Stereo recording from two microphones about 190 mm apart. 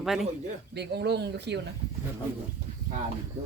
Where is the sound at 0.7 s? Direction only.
60° right (ahead or behind).